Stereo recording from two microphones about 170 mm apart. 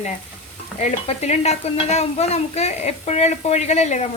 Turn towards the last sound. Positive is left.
turn(degrees=40)  # may be behind; listen again after turning